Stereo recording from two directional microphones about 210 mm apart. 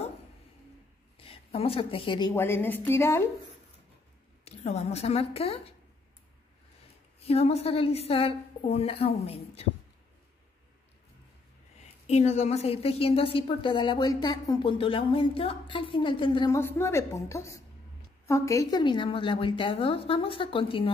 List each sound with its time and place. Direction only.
1.1 s a woman's voice: 25° left (ahead or behind)
4.5 s a woman's voice: 30° left (ahead or behind)
7.2 s a woman's voice: 30° left (ahead or behind)
12.1 s a woman's voice: 30° left (ahead or behind)